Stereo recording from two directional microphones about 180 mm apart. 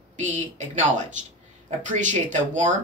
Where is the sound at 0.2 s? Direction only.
40° right (ahead or behind).